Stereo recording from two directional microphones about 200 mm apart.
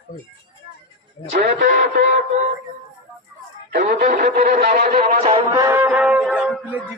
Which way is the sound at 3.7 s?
50° right (ahead or behind).